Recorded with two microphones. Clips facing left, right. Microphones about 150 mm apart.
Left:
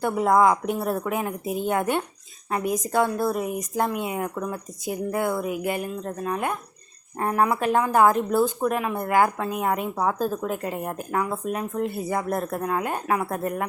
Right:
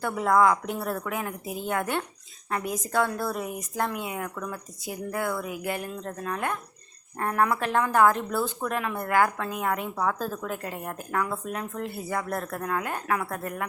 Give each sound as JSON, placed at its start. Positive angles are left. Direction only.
{"t": 0.0, "sound": "speech", "side_deg": 20}